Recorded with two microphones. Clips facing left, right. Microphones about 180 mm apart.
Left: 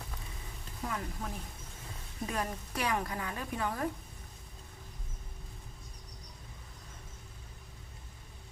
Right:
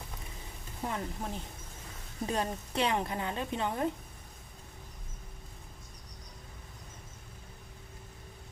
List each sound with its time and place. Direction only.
0.9 s a woman's voice: 30° right (ahead or behind)